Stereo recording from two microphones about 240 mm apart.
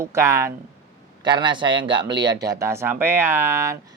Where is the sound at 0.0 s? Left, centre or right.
Centre.